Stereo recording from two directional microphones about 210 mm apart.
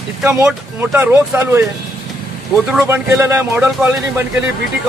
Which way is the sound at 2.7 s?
10° right (ahead or behind).